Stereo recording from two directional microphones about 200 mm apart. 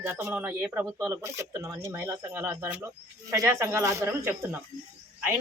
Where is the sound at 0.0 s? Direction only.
10° right (ahead or behind).